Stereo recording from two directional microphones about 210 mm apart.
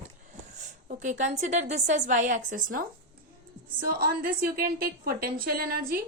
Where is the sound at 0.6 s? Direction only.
35° right (ahead or behind).